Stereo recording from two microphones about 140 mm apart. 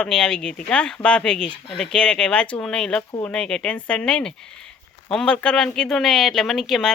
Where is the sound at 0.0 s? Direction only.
5° left (ahead or behind).